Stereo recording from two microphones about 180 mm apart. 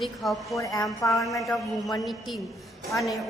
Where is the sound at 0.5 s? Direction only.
20° left (ahead or behind).